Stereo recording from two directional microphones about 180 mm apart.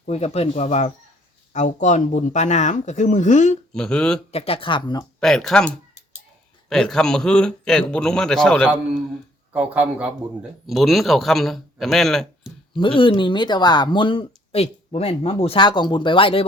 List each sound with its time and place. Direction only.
0.1 s speech: 35° left (ahead or behind)
3.7 s a man's voice: 5° left (ahead or behind)
4.3 s speech: 35° left (ahead or behind)
5.2 s a man's voice: centre (ahead or behind)
9.5 s a man's voice: 10° right (ahead or behind)
12.7 s speech: 30° left (ahead or behind)